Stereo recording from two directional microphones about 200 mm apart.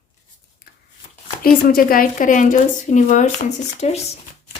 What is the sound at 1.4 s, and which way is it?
A woman's voice, 45° left (ahead or behind).